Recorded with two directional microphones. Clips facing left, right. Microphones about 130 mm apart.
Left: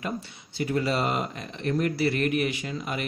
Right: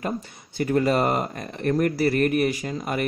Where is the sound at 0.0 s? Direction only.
45° right (ahead or behind).